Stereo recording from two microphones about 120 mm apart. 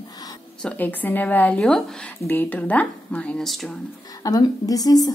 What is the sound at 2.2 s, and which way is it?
Speech, 15° left (ahead or behind).